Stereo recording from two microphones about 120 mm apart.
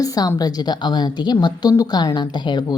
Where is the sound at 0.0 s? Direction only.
30° left (ahead or behind).